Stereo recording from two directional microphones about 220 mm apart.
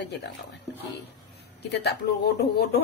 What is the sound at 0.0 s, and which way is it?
Speech, 50° left (ahead or behind).